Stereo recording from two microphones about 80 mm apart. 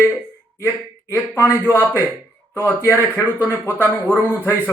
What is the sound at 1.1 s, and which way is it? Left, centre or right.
Speech, left.